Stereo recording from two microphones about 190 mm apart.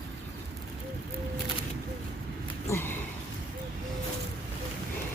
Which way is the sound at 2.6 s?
15° left (ahead or behind).